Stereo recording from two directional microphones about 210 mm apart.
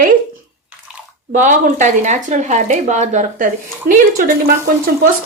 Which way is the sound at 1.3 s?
35° right (ahead or behind).